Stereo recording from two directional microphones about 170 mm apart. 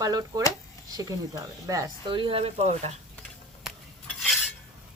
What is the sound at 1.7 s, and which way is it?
Speech, 25° right (ahead or behind).